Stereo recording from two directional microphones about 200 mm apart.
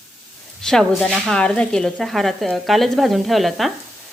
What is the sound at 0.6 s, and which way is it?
A woman's voice, 5° left (ahead or behind).